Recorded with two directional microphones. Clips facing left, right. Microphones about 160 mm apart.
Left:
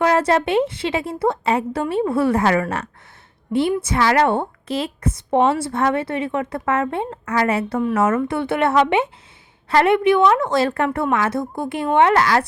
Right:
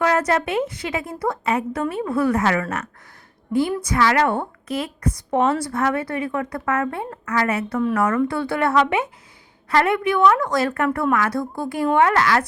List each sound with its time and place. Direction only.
0.0 s a woman's voice: 30° left (ahead or behind)